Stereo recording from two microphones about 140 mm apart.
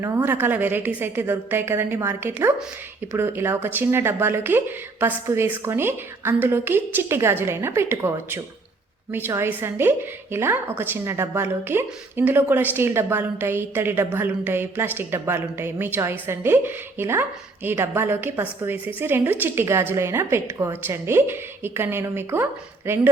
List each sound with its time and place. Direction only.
0.0 s a woman's voice: 20° right (ahead or behind)